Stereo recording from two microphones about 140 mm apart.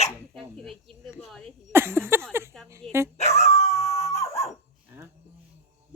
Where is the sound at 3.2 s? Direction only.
50° left (ahead or behind).